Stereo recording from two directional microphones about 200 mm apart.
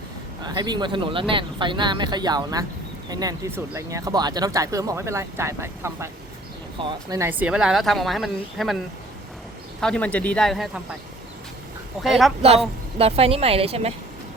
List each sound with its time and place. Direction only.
0.4 s speech: 20° right (ahead or behind)
6.7 s speech: 25° right (ahead or behind)
7.2 s a woman's voice: 10° right (ahead or behind)
9.8 s a woman's voice: 5° left (ahead or behind)
12.0 s a woman's voice: centre (ahead or behind)
12.4 s speech: 30° right (ahead or behind)